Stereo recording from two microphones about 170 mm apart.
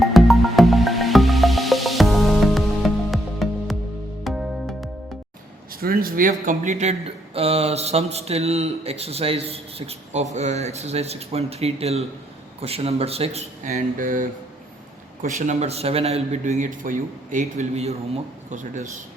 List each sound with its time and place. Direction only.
0.0 s music: centre (ahead or behind)
5.8 s speech: 60° right (ahead or behind)